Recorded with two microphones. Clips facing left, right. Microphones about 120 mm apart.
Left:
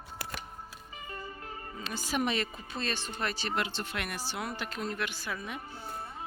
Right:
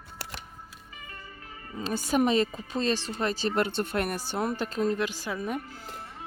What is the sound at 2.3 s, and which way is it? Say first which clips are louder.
Speech: right 8 dB; 35° right (ahead or behind).